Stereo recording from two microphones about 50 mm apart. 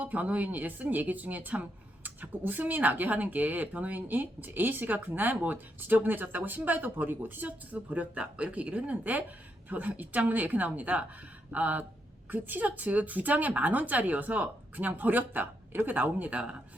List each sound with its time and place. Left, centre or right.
0.0 s speech: right